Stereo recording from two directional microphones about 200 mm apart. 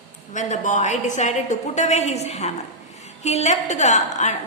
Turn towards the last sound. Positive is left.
turn(degrees=35)  # may be behind; listen again after turning